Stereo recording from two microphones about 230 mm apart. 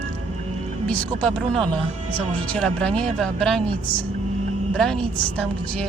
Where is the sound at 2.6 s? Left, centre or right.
Centre.